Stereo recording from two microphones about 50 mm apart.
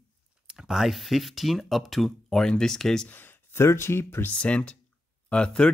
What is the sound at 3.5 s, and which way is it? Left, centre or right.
Speech, left.